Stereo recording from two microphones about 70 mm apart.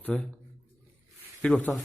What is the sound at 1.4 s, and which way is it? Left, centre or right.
Speech, centre.